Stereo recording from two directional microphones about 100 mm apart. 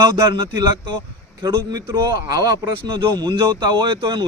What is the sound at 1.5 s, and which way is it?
Speech, 40° right (ahead or behind).